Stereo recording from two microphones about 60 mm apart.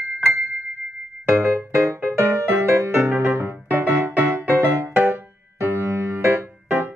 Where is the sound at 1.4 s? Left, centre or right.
Right.